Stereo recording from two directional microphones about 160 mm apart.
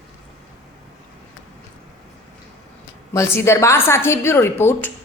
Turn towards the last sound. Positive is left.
turn(degrees=15)  # may be behind; listen again after turning